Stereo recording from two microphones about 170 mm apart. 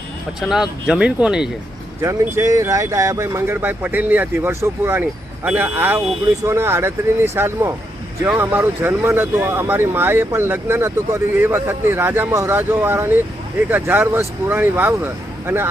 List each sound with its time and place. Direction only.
0.3 s speech: 5° right (ahead or behind)
2.0 s speech: 15° right (ahead or behind)